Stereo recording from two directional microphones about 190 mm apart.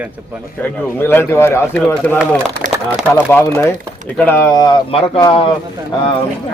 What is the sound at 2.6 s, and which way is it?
Speech, 40° right (ahead or behind).